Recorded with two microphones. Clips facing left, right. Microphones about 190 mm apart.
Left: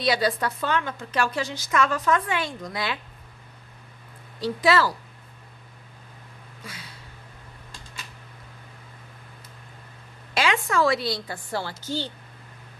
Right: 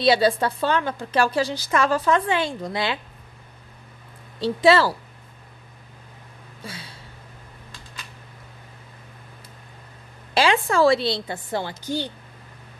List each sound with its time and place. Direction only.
0.0 s a woman's voice: 25° right (ahead or behind)
4.4 s a woman's voice: 25° right (ahead or behind)
6.6 s a sound: 30° right (ahead or behind)
10.3 s a woman's voice: 30° right (ahead or behind); by 12.1 s 15° right (ahead or behind)